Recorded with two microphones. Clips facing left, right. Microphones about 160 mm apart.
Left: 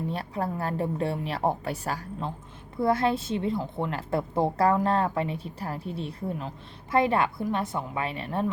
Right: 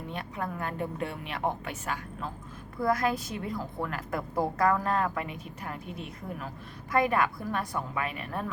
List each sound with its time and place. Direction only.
0.1 s a woman's voice: 35° left (ahead or behind)